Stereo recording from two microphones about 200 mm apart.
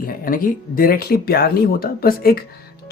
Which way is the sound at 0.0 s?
45° left (ahead or behind).